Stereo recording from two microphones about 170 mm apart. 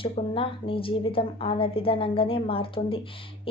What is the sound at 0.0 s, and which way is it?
A woman's voice, 30° left (ahead or behind).